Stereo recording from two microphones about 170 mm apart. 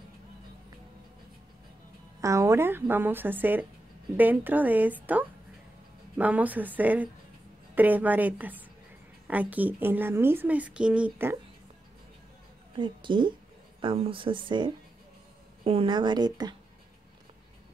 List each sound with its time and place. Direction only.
2.2 s speech: 15° right (ahead or behind)
12.7 s speech: 30° right (ahead or behind)